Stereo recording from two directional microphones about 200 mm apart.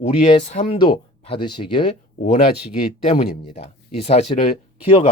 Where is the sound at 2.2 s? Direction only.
35° left (ahead or behind).